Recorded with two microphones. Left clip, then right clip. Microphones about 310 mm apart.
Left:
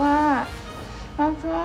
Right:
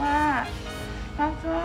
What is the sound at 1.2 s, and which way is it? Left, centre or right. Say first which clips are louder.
Speech: left 4 dB; centre.